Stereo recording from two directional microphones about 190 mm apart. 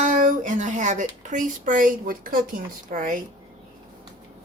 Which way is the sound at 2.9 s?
45° right (ahead or behind).